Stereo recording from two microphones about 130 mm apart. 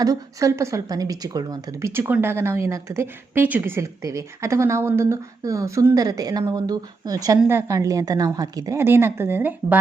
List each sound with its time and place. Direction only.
0.0 s a woman's voice: 25° right (ahead or behind)
1.9 s a woman's voice: 15° right (ahead or behind)